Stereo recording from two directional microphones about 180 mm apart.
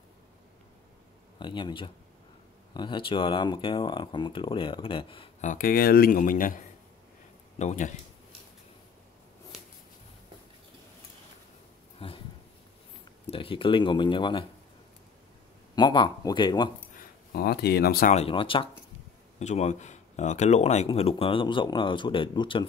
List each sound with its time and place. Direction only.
1.4 s speech: 25° left (ahead or behind)
5.4 s a man's voice: 50° left (ahead or behind)
12.0 s dog: 30° left (ahead or behind)
13.3 s speech: 30° left (ahead or behind)
15.7 s speech: 25° left (ahead or behind)
16.9 s speech: 55° left (ahead or behind)
18.1 s speech: 30° left (ahead or behind)
19.4 s speech: 40° left (ahead or behind)